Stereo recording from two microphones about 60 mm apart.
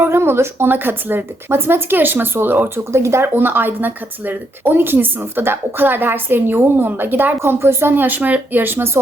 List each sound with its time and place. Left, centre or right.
0.0 s a woman's voice: right
7.3 s a woman's voice: right